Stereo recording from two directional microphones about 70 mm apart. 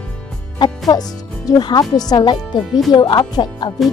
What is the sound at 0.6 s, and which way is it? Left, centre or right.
Speech, left.